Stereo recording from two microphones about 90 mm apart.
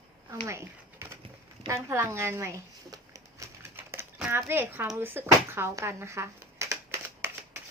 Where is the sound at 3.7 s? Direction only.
25° right (ahead or behind).